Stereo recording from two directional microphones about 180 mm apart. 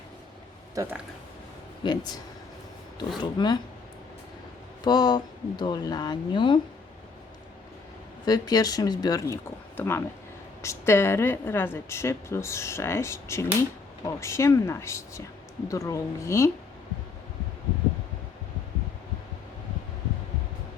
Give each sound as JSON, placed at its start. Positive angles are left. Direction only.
{"t": 0.8, "sound": "speech", "side_deg": -10}
{"t": 1.8, "sound": "speech", "side_deg": 25}
{"t": 3.2, "sound": "speech", "side_deg": 25}
{"t": 4.8, "sound": "speech", "side_deg": 25}
{"t": 8.2, "sound": "a woman's voice", "side_deg": 20}